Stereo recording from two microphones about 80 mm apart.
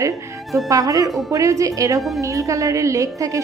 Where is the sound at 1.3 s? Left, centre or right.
Right.